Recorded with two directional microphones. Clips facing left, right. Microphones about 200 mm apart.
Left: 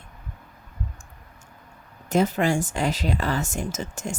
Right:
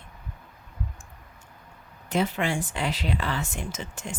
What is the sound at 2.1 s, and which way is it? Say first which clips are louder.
Speech: left 5 dB; 45° left (ahead or behind).